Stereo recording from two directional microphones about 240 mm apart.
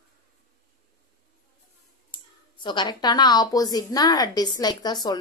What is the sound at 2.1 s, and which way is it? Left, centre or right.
Speech, centre.